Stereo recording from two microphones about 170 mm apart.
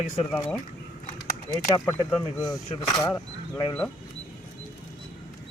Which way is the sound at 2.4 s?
20° left (ahead or behind).